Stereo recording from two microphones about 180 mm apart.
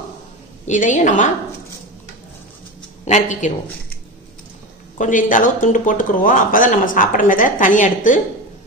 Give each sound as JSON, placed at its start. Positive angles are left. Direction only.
{"t": 0.7, "sound": "speech", "side_deg": 45}
{"t": 3.1, "sound": "speech", "side_deg": 40}
{"t": 4.9, "sound": "speech", "side_deg": 45}